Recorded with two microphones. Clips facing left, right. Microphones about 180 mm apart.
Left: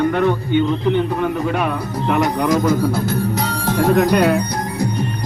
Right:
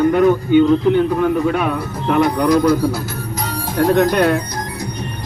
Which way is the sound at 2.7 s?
50° left (ahead or behind).